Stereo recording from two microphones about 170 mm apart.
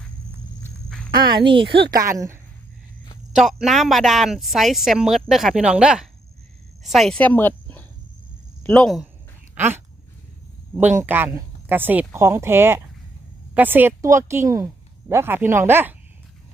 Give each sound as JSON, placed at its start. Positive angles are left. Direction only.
{"t": 0.6, "sound": "walk", "side_deg": 5}
{"t": 1.1, "sound": "speech", "side_deg": -25}
{"t": 1.8, "sound": "a woman's voice", "side_deg": -60}
{"t": 2.0, "sound": "speech", "side_deg": -15}
{"t": 3.3, "sound": "speech", "side_deg": -5}
{"t": 9.6, "sound": "dog", "side_deg": -15}
{"t": 10.9, "sound": "speech", "side_deg": -10}